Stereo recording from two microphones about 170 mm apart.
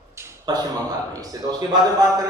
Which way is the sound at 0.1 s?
20° right (ahead or behind).